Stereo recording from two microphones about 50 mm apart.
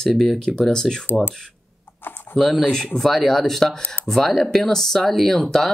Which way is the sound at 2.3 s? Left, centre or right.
Left.